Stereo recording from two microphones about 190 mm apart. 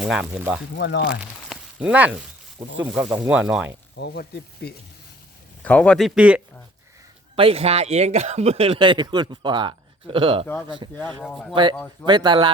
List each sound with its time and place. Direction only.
0.0 s speech: 5° right (ahead or behind)
0.8 s speech: 60° left (ahead or behind)
1.2 s a sound: 5° right (ahead or behind)
2.6 s speech: 10° right (ahead or behind)
3.9 s speech: 60° left (ahead or behind)
5.6 s speech: 5° left (ahead or behind)
7.3 s speech: 30° right (ahead or behind)
11.2 s speech: centre (ahead or behind)
11.5 s speech: 25° right (ahead or behind)